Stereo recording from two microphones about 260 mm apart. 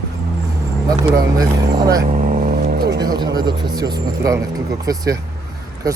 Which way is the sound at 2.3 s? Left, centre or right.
Right.